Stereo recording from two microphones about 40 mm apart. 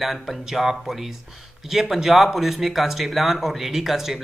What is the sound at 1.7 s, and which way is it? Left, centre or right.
Speech, centre.